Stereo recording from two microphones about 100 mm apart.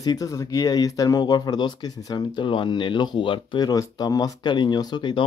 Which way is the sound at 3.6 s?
40° left (ahead or behind).